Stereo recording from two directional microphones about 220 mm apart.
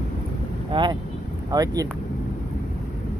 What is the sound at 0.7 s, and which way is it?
Speech, 20° right (ahead or behind).